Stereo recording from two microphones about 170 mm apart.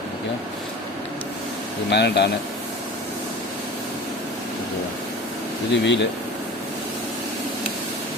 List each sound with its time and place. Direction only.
1.9 s speech: 75° left (ahead or behind)
5.7 s speech: 90° left